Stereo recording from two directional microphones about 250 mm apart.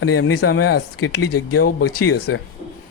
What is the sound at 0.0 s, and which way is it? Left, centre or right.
Speech, left.